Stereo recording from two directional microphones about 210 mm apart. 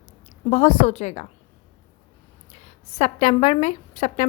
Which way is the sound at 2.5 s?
30° left (ahead or behind).